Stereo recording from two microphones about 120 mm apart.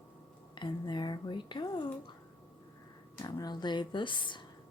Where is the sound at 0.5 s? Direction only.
40° left (ahead or behind).